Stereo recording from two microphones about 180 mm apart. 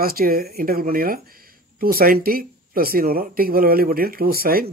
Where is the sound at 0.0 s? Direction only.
55° right (ahead or behind).